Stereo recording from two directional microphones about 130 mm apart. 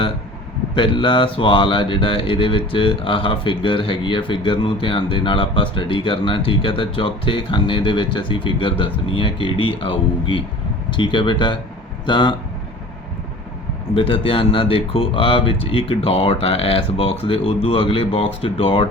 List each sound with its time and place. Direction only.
0.8 s speech: 40° left (ahead or behind)
13.9 s speech: 45° left (ahead or behind)